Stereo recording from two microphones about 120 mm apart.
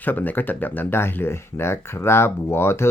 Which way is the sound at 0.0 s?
15° left (ahead or behind).